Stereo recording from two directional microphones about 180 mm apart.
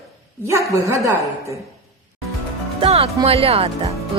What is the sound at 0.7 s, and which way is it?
Speech, 15° right (ahead or behind).